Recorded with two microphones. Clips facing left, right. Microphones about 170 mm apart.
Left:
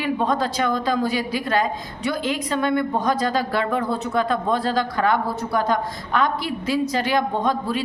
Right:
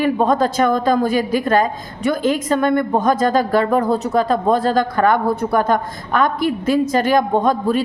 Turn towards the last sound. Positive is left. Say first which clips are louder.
# right 6 dB
turn(degrees=-45)  # may be behind; listen again after turning